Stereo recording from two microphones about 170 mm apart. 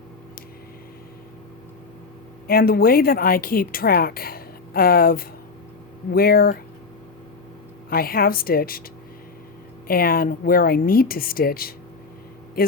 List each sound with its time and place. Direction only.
2.5 s speech: 60° left (ahead or behind)
7.9 s speech: 60° left (ahead or behind)
9.8 s speech: 60° left (ahead or behind)